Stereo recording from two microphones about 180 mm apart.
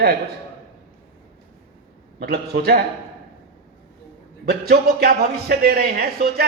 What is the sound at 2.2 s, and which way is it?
Speech, 60° right (ahead or behind).